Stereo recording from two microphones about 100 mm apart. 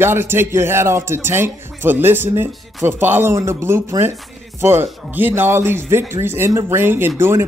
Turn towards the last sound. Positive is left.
turn(degrees=-25)  # may be behind; listen again after turning